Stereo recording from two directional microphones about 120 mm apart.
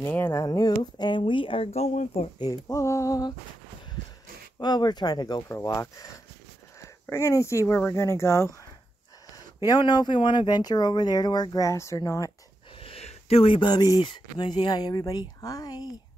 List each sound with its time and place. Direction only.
0.0 s speech: 20° left (ahead or behind); by 2.2 s 75° left (ahead or behind)
2.3 s speech: 35° left (ahead or behind)
2.8 s speech: 25° left (ahead or behind)
4.6 s speech: 35° left (ahead or behind)
7.1 s speech: 25° left (ahead or behind)
9.3 s speech: 35° left (ahead or behind)
12.7 s speech: 55° left (ahead or behind); by 15.9 s 35° left (ahead or behind)